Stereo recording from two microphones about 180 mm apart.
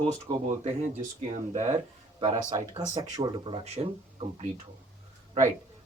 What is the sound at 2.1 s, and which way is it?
Speech, 25° right (ahead or behind).